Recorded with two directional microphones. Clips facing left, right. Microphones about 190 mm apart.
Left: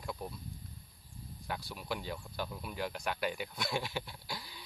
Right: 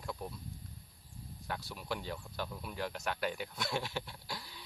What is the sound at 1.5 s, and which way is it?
Speech, 5° left (ahead or behind).